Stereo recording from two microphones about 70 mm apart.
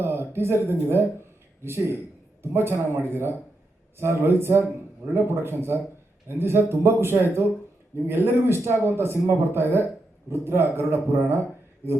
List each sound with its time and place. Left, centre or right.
0.0 s speech: right